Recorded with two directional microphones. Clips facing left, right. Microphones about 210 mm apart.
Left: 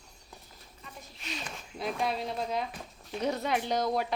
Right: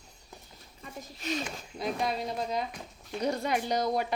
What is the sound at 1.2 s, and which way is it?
Speech, 45° right (ahead or behind).